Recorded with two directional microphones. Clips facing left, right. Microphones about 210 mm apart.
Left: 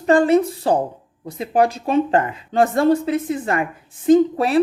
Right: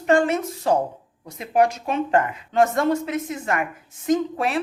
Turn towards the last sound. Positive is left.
turn(degrees=35)  # may be behind; listen again after turning